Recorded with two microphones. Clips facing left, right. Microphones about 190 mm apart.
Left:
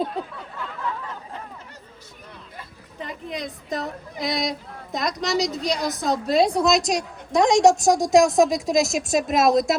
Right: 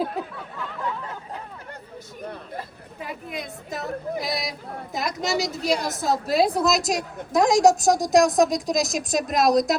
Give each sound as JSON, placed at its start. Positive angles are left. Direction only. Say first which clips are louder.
{"t": 3.0, "sound": "a woman's voice", "louder": "left 2 dB", "side_deg": -5}